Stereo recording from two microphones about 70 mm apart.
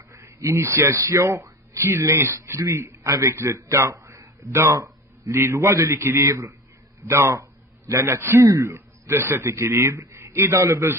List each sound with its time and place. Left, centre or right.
0.1 s a man's voice: right